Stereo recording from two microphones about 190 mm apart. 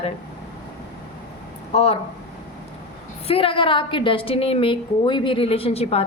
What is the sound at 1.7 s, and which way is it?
Speech, 35° left (ahead or behind).